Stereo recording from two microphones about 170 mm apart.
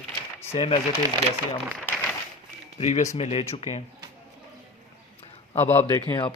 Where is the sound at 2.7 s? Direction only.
40° left (ahead or behind).